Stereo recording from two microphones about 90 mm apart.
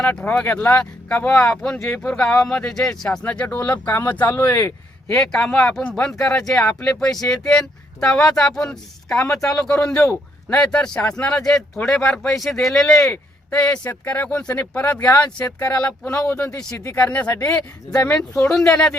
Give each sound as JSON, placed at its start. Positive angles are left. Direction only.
{"t": 0.0, "sound": "speech", "side_deg": 15}
{"t": 5.1, "sound": "speech", "side_deg": 5}
{"t": 13.5, "sound": "speech", "side_deg": 15}
{"t": 15.5, "sound": "speech", "side_deg": 45}
{"t": 15.8, "sound": "speech", "side_deg": 10}
{"t": 17.3, "sound": "speech", "side_deg": 40}
{"t": 17.9, "sound": "speech", "side_deg": 10}